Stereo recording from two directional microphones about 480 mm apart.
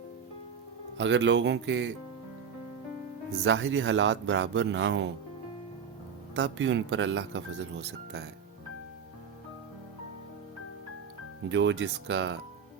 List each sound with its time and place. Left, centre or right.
0.9 s speech: right
3.4 s speech: right
6.3 s speech: right
11.4 s speech: right